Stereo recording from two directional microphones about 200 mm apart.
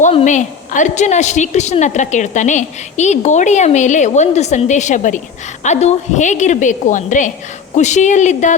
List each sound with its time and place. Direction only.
0.0 s a woman's voice: 35° left (ahead or behind)